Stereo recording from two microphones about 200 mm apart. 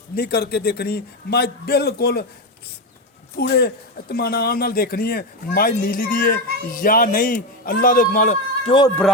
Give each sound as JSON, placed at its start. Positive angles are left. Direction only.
{"t": 0.2, "sound": "a man's voice", "side_deg": 55}
{"t": 3.3, "sound": "a man's voice", "side_deg": 50}